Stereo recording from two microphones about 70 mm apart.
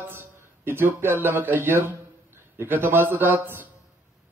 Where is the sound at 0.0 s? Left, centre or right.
Right.